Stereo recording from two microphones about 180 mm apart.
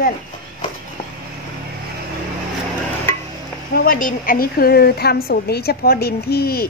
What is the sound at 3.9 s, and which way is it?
A woman's voice, 50° left (ahead or behind).